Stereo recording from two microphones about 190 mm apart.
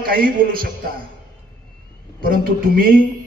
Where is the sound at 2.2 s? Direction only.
50° right (ahead or behind).